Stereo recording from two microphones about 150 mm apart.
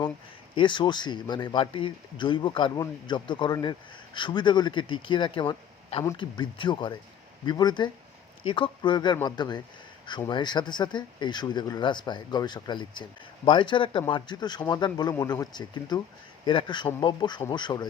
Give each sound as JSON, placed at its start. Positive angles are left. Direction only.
{"t": 0.5, "sound": "speech", "side_deg": 30}